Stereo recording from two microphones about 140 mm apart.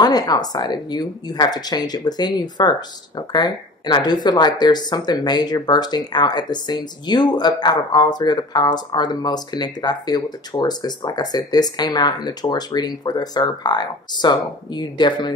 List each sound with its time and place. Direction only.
0.0 s speech: 30° left (ahead or behind)